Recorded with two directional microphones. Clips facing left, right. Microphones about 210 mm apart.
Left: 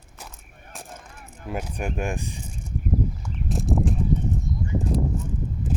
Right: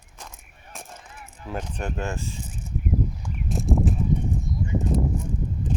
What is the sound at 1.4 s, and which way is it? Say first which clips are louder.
Speech: left 1 dB; 10° left (ahead or behind).